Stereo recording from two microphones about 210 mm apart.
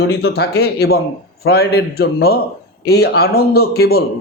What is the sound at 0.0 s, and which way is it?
A man's voice, 50° left (ahead or behind).